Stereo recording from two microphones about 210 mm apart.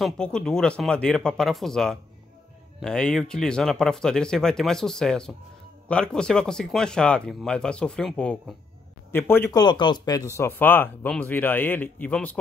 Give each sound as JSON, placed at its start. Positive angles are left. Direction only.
{"t": 0.0, "sound": "speech", "side_deg": 5}